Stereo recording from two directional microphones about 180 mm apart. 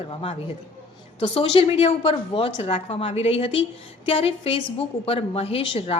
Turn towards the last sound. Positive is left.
turn(degrees=30)  # may be behind; listen again after turning